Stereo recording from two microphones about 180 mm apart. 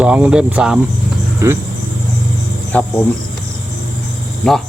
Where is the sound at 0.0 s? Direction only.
5° right (ahead or behind).